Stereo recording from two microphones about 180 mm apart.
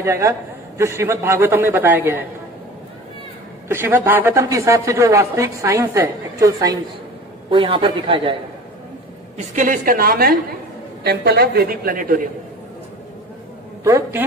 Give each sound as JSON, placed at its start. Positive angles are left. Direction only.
{"t": 0.0, "sound": "a woman's voice", "side_deg": -15}
{"t": 3.6, "sound": "a woman's voice", "side_deg": -10}
{"t": 9.6, "sound": "a woman's voice", "side_deg": -50}
{"t": 13.8, "sound": "a woman's voice", "side_deg": -15}